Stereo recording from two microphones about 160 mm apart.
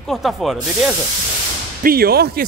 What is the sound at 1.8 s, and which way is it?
Speech, 70° right (ahead or behind).